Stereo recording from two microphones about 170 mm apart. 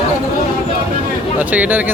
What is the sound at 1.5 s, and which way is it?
Speech, 10° right (ahead or behind).